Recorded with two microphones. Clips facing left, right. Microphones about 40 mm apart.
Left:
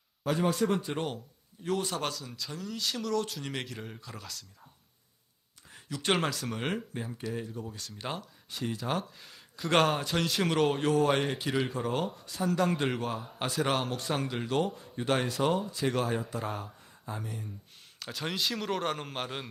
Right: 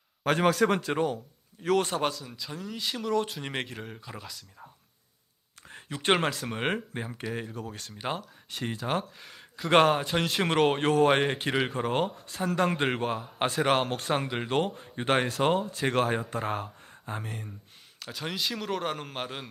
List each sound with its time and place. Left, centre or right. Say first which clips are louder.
0.3 s a man's voice: right 4 dB; right
2.1 s speech: right 1 dB; centre; by 3.8 s right
3.8 s speech: right 2 dB; centre
5.6 s speech: right 4 dB; right
7.3 s speech: right 2 dB; right
7.9 s speech: right 4 dB; centre
8.4 s speech: right 1 dB; right
9.0 s speech: right 3 dB; right
9.8 s speech: right 4 dB; centre
10.7 s speech: right 3 dB; right
18.0 s a man's voice: even; centre